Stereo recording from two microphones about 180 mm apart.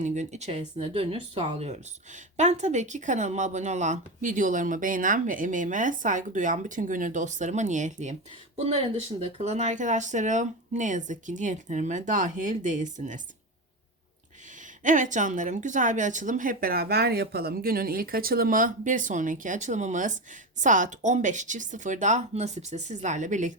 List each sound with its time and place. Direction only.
0.0 s speech: 40° right (ahead or behind)
14.8 s speech: 45° right (ahead or behind)